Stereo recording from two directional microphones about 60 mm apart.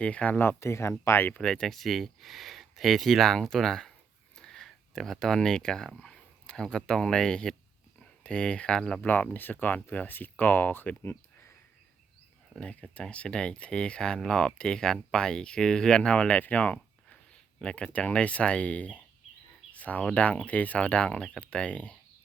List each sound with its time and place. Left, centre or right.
0.0 s speech: left
0.6 s speech: left
1.4 s speech: centre
4.4 s a sound: centre
6.0 s speech: centre
9.0 s speech: left
11.0 s a sound: left
12.5 s speech: centre
16.4 s a sound: left
17.6 s speech: centre